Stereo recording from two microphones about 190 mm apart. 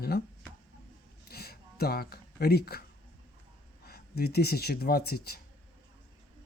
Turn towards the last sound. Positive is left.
turn(degrees=55)  # may be behind; listen again after turning